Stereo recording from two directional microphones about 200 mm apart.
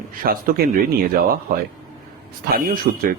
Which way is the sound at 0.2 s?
45° right (ahead or behind).